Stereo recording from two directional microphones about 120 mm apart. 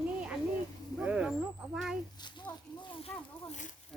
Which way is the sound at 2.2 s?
35° left (ahead or behind).